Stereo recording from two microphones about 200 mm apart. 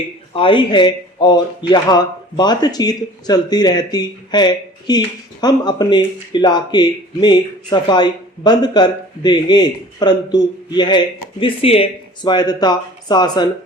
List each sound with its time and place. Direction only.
0.3 s speech: 25° left (ahead or behind)